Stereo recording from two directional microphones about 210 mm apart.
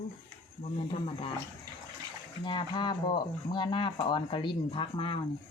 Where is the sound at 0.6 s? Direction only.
30° left (ahead or behind).